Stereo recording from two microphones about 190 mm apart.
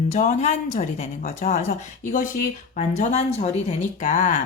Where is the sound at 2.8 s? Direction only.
35° left (ahead or behind).